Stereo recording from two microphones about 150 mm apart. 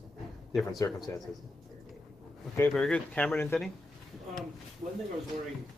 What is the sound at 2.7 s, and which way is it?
Speech, 5° left (ahead or behind).